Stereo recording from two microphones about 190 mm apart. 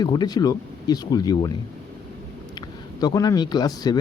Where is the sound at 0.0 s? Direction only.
20° left (ahead or behind).